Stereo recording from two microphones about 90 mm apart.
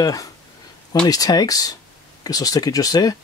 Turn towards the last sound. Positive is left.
turn(degrees=40)  # may be behind; listen again after turning